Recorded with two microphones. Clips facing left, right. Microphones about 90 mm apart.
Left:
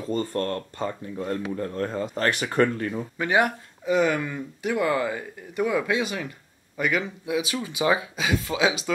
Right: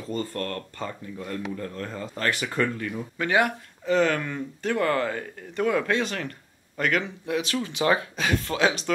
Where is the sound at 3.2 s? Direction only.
20° left (ahead or behind).